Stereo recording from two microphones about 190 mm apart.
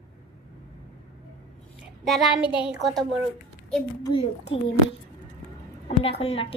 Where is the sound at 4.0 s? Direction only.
25° left (ahead or behind).